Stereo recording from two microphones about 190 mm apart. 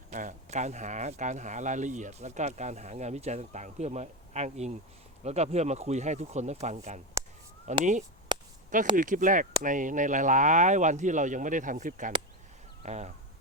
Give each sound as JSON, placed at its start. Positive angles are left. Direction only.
{"t": 0.1, "sound": "speech", "side_deg": -40}
{"t": 9.0, "sound": "speech", "side_deg": -45}